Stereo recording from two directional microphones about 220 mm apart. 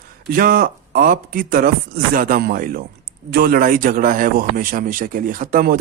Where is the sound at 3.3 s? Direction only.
45° right (ahead or behind).